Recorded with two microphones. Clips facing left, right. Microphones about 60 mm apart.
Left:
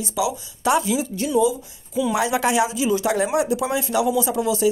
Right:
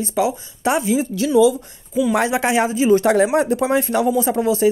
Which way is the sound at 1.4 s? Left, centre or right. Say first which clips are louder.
Right 5 dB; right.